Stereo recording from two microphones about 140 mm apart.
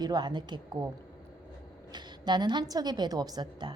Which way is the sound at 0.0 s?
30° right (ahead or behind).